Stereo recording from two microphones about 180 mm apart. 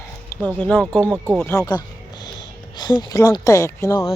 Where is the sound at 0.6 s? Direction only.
5° left (ahead or behind).